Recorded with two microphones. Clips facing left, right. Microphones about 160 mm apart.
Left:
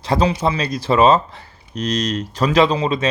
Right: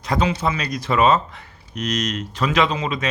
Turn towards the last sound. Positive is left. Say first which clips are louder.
# left 5 dB
turn(degrees=30)  # may be behind; listen again after turning